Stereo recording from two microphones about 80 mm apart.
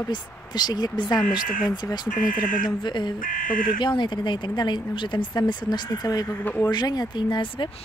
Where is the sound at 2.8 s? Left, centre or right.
Left.